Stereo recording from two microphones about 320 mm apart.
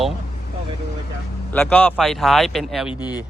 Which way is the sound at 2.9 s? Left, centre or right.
Centre.